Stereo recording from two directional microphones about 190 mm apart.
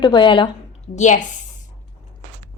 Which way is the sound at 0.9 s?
40° left (ahead or behind).